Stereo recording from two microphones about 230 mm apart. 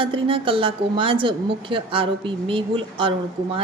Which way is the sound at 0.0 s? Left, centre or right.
Right.